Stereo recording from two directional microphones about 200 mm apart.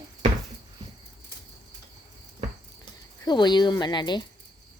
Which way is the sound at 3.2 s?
20° left (ahead or behind).